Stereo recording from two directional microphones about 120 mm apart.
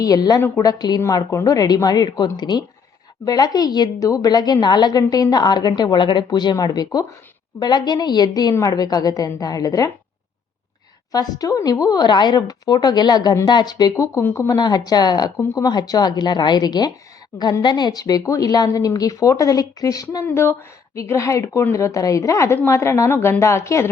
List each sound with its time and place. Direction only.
0.0 s a woman's voice: 30° left (ahead or behind)
11.1 s a woman's voice: 30° left (ahead or behind)
14.5 s a woman's voice: 35° left (ahead or behind)
20.2 s a woman's voice: 20° left (ahead or behind)